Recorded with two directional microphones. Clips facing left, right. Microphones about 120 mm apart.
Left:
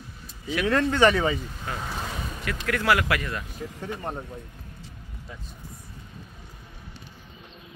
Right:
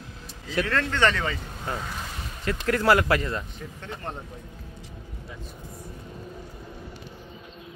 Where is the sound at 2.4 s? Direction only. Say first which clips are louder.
Right 3 dB; 30° right (ahead or behind).